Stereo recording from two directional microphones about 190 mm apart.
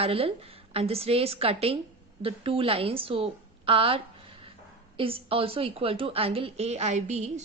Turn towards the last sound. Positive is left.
turn(degrees=-35)  # may be behind; listen again after turning